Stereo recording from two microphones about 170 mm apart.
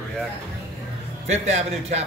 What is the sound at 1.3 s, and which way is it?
Speech, 40° right (ahead or behind).